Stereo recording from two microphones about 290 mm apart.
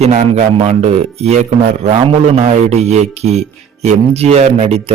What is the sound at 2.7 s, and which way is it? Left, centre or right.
Speech, right.